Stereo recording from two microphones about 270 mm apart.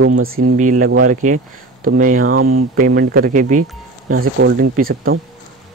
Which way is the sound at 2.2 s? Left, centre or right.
Right.